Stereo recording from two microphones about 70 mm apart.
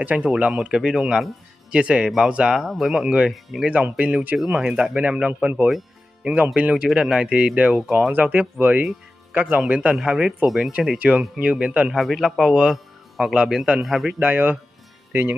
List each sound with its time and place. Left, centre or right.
0.0 s speech: centre
0.3 s speech: centre
2.6 s a man's voice: centre
4.0 s speech: right
4.4 s speech: centre
8.1 s speech: right
9.7 s speech: centre
11.0 s speech: centre
11.9 s a man's voice: centre
14.2 s speech: right